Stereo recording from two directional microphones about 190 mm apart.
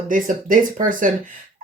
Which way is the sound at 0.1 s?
45° right (ahead or behind).